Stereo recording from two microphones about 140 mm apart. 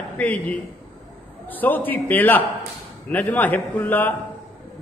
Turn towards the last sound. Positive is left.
turn(degrees=10)  # may be behind; listen again after turning